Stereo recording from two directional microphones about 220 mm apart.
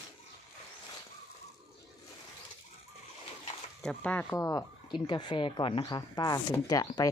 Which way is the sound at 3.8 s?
5° left (ahead or behind).